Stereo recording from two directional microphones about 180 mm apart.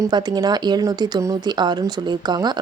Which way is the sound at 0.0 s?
25° right (ahead or behind).